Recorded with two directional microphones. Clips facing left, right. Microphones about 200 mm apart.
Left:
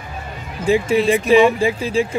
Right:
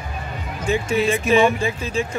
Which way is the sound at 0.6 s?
30° left (ahead or behind).